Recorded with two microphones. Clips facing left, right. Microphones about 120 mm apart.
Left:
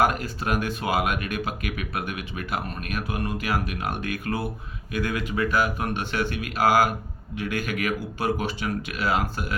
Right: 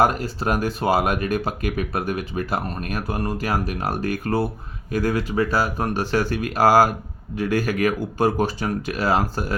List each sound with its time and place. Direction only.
0.0 s speech: 30° right (ahead or behind)